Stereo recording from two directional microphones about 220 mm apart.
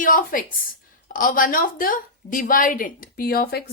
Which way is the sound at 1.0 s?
40° left (ahead or behind).